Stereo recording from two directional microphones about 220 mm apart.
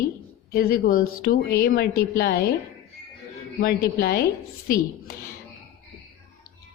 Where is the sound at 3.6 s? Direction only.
45° left (ahead or behind).